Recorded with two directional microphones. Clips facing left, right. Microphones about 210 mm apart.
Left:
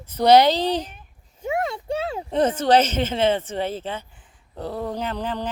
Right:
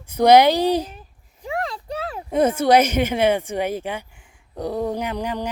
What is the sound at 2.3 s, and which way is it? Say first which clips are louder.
Speech: right 2 dB; 10° right (ahead or behind).